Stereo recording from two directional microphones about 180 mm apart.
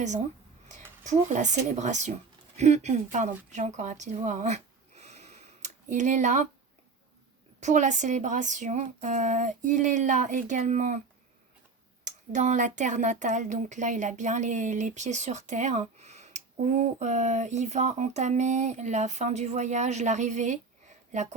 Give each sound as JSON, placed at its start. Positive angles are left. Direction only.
{"t": 1.0, "sound": "speech", "side_deg": -40}
{"t": 3.5, "sound": "a sound", "side_deg": -40}
{"t": 7.6, "sound": "speech", "side_deg": -40}
{"t": 12.0, "sound": "a woman's voice", "side_deg": -40}